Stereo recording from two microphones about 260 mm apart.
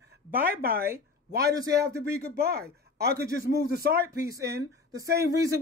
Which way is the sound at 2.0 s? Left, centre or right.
Right.